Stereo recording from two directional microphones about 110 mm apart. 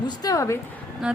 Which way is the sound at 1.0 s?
5° right (ahead or behind).